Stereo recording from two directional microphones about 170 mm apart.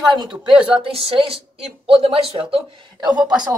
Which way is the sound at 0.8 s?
35° right (ahead or behind).